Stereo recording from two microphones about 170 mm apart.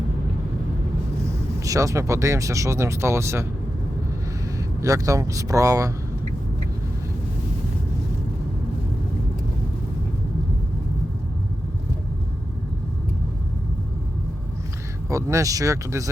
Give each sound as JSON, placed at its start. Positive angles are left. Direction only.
{"t": 1.5, "sound": "speech", "side_deg": -20}
{"t": 4.5, "sound": "speech", "side_deg": -20}
{"t": 15.1, "sound": "speech", "side_deg": -20}